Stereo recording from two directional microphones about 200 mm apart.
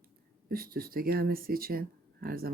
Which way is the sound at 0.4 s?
50° right (ahead or behind).